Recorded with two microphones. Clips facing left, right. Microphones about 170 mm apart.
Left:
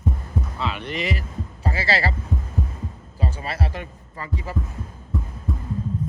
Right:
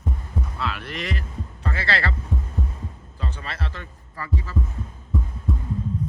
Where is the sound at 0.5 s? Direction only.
Centre (ahead or behind).